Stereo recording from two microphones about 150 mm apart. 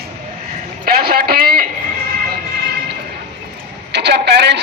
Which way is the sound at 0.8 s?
90° right.